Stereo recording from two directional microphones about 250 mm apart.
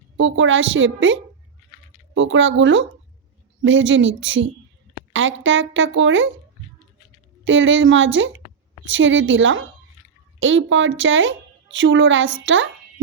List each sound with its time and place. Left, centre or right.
0.2 s a woman's voice: right
7.4 s a woman's voice: right